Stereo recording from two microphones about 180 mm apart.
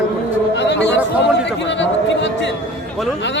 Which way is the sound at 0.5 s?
75° left (ahead or behind).